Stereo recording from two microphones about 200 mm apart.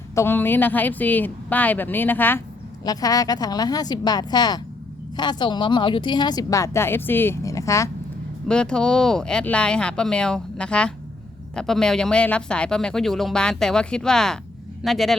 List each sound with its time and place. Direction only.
0.1 s speech: 10° left (ahead or behind)
8.4 s speech: 5° left (ahead or behind)